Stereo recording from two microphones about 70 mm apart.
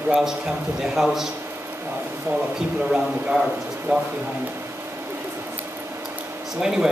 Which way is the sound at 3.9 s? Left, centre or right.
Centre.